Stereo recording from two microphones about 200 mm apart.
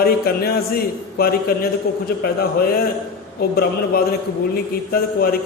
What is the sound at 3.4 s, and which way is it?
Speech, 50° left (ahead or behind).